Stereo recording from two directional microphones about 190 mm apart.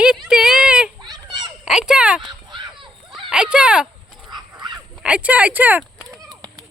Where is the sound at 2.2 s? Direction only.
25° right (ahead or behind).